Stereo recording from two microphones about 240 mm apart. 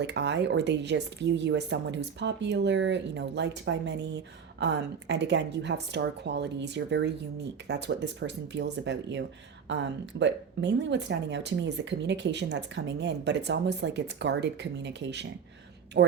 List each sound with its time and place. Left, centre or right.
0.0 s speech: right